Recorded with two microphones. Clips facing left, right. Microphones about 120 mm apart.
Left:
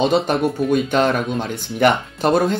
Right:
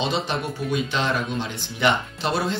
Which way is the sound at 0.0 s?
50° left (ahead or behind).